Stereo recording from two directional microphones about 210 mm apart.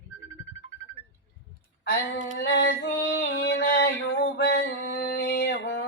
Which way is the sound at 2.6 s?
45° left (ahead or behind).